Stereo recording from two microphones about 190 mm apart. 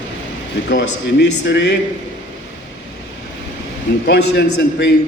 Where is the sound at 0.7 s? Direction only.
65° left (ahead or behind).